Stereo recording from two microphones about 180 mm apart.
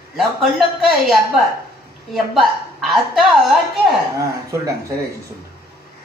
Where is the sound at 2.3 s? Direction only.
Centre (ahead or behind).